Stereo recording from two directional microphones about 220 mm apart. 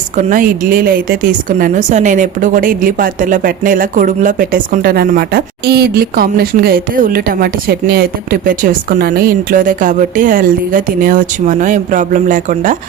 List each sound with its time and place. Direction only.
0.2 s a woman's voice: 35° right (ahead or behind)